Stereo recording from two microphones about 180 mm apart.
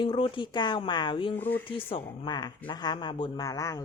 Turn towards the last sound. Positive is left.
turn(degrees=20)  # may be behind; listen again after turning